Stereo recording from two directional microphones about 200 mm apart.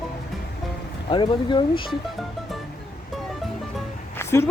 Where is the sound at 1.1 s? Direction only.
25° left (ahead or behind).